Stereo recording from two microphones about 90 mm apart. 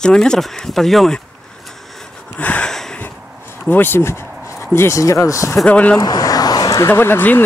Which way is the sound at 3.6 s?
25° left (ahead or behind).